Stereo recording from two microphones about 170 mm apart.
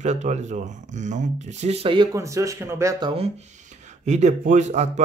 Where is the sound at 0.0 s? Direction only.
40° right (ahead or behind).